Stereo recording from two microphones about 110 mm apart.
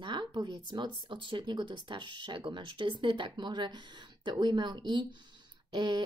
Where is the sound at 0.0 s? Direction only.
45° right (ahead or behind).